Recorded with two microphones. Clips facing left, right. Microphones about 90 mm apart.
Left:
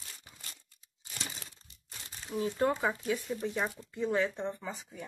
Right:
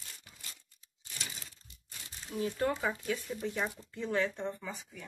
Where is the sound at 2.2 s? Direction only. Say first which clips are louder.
Left 3 dB; 25° left (ahead or behind).